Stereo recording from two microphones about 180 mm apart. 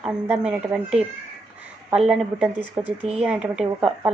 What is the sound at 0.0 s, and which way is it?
Speech, 5° right (ahead or behind).